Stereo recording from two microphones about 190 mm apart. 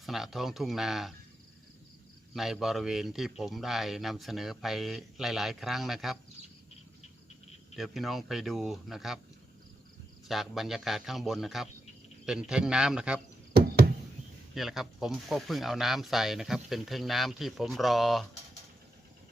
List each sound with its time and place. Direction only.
0.0 s speech: centre (ahead or behind)
2.3 s speech: centre (ahead or behind)
7.8 s speech: centre (ahead or behind)
10.2 s speech: centre (ahead or behind)
13.5 s a sound: 55° right (ahead or behind)
14.5 s speech: centre (ahead or behind)